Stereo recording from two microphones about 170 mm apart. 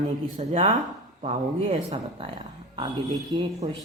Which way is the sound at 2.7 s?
25° right (ahead or behind).